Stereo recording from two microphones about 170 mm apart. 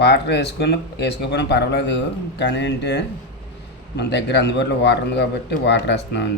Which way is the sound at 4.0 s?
75° left (ahead or behind).